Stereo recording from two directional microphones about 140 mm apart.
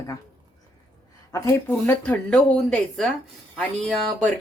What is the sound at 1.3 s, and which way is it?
A woman's voice, 20° left (ahead or behind).